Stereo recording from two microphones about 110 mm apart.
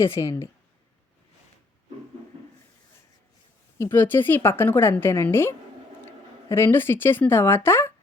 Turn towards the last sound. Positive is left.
turn(degrees=20)  # may be behind; listen again after turning